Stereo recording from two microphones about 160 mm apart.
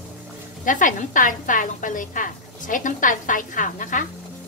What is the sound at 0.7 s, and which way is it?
A woman's voice, 55° left (ahead or behind).